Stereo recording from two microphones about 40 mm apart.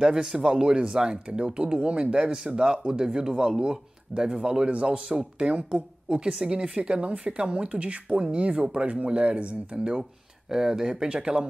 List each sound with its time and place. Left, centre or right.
0.0 s a man's voice: centre; by 9.6 s right
10.5 s a man's voice: centre